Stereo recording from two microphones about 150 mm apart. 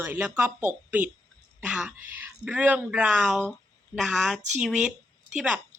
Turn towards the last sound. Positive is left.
turn(degrees=-5)  # may be behind; listen again after turning